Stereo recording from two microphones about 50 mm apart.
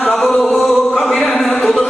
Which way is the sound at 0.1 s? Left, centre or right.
Centre.